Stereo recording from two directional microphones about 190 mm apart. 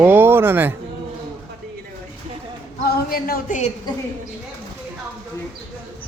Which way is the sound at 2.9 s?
50° left (ahead or behind).